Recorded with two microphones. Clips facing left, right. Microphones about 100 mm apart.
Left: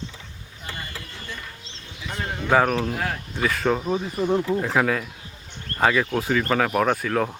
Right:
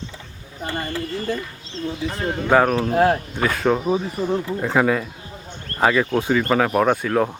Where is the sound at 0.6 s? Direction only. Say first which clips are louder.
Right 10 dB; 45° right (ahead or behind).